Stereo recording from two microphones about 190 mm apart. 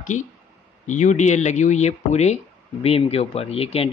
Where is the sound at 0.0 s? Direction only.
40° left (ahead or behind).